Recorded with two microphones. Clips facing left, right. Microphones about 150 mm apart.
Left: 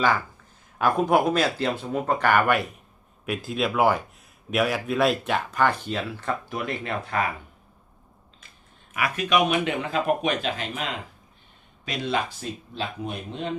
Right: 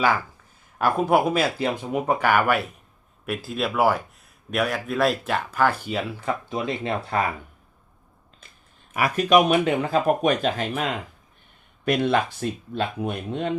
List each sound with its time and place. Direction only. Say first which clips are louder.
0.8 s speech: right 1 dB; 5° right (ahead or behind)
6.5 s speech: right 3 dB; 20° right (ahead or behind)
7.1 s speech: right 2 dB; 30° right (ahead or behind)
8.9 s speech: right 5 dB; 40° right (ahead or behind)
11.9 s speech: right 6 dB; 55° right (ahead or behind)